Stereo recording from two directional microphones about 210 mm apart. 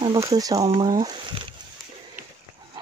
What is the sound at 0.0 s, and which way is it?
Speech, 20° right (ahead or behind).